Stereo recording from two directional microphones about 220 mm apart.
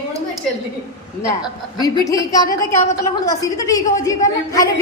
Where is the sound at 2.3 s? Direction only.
15° left (ahead or behind).